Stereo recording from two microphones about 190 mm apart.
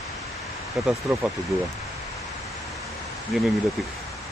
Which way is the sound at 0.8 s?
Centre (ahead or behind).